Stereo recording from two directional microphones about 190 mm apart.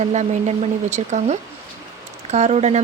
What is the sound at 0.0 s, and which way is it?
Speech, 35° right (ahead or behind).